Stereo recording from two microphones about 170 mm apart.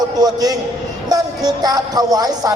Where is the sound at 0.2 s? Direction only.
20° right (ahead or behind).